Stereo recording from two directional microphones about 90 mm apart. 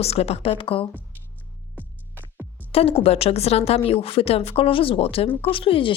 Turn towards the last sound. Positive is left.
turn(degrees=85)